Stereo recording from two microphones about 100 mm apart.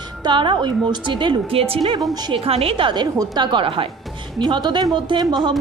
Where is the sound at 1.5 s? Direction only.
70° right (ahead or behind).